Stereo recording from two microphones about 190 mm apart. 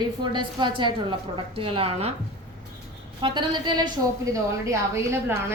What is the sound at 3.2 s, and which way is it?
A woman's voice, 25° right (ahead or behind).